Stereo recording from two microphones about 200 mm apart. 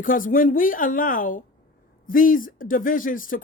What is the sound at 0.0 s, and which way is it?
Speech, 45° left (ahead or behind).